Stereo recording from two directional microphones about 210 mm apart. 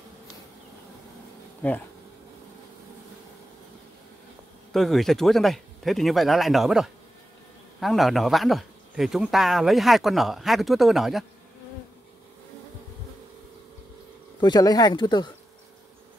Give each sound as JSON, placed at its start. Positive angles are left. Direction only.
{"t": 1.6, "sound": "speech", "side_deg": 5}
{"t": 4.7, "sound": "speech", "side_deg": 0}
{"t": 14.4, "sound": "speech", "side_deg": 20}